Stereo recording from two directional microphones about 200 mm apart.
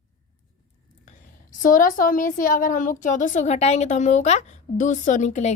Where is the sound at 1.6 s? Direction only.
40° left (ahead or behind).